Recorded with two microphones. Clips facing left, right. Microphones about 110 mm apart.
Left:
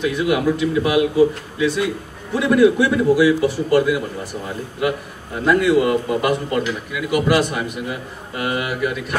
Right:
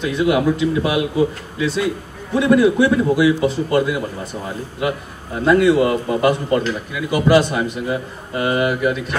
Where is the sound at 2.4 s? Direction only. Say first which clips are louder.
Right 1 dB; 20° right (ahead or behind).